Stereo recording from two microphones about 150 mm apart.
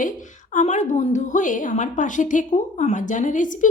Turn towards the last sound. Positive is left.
turn(degrees=55)  # may be behind; listen again after turning